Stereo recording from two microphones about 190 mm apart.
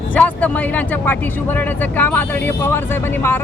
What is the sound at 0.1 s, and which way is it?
Speech, 5° left (ahead or behind).